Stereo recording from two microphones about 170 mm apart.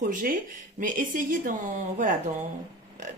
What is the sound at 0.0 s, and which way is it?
Speech, 50° right (ahead or behind).